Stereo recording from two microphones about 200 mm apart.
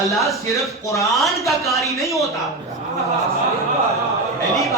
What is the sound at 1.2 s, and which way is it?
A man's voice, centre (ahead or behind).